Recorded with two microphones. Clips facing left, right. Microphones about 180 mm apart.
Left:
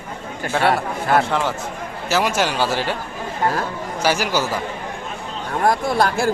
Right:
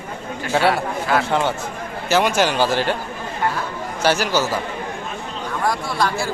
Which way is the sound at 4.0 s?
10° left (ahead or behind).